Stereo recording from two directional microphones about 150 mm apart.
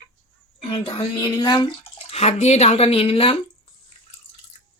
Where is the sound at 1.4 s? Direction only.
30° left (ahead or behind).